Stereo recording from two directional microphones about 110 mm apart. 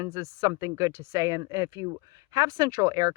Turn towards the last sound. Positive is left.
turn(degrees=-30)  # may be behind; listen again after turning